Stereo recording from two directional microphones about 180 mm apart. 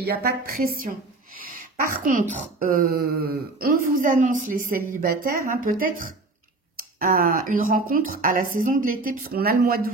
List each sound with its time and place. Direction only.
0.0 s a woman's voice: 60° right (ahead or behind)